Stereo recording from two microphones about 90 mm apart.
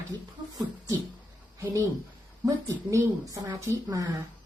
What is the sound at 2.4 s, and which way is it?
A woman's voice, 35° right (ahead or behind).